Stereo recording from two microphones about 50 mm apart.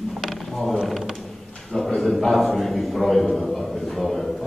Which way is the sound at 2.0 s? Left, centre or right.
Centre.